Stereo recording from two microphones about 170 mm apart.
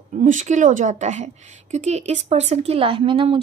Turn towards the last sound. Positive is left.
turn(degrees=-30)  # may be behind; listen again after turning